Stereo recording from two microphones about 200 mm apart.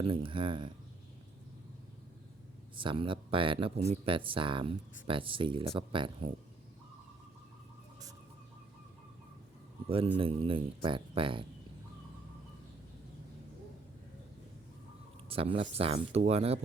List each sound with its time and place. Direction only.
0.0 s speech: 25° right (ahead or behind)
2.7 s speech: 25° right (ahead or behind)
9.9 s speech: 25° right (ahead or behind)
15.3 s speech: 25° right (ahead or behind)